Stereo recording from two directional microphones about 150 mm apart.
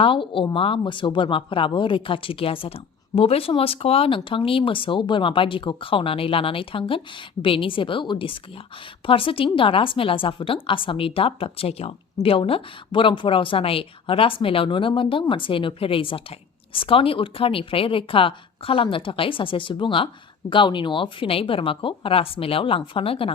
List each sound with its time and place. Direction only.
0.0 s speech: 35° left (ahead or behind)